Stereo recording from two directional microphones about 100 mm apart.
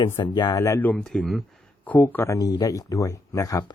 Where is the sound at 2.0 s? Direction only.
30° left (ahead or behind).